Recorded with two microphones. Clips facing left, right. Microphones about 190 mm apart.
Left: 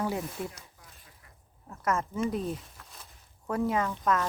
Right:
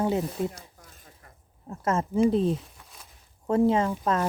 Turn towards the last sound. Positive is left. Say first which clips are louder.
# right 3 dB
turn(degrees=-30)  # may be behind; listen again after turning